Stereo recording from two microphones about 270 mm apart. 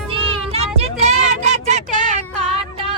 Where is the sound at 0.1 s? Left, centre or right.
Right.